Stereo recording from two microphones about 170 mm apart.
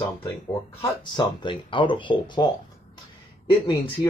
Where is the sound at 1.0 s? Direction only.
25° left (ahead or behind).